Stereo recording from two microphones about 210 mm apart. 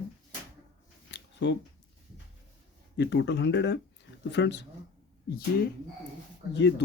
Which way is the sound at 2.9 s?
55° left (ahead or behind).